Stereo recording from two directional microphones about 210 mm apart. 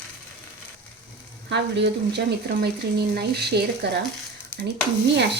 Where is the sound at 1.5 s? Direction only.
55° right (ahead or behind).